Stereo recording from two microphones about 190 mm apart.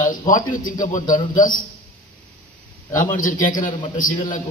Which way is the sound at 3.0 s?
45° left (ahead or behind).